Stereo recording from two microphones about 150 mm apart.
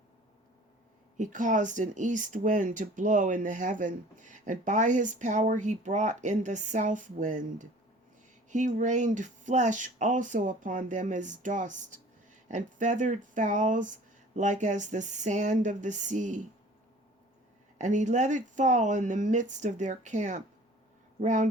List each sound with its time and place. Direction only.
1.1 s speech: 55° right (ahead or behind)
17.7 s speech: 55° right (ahead or behind)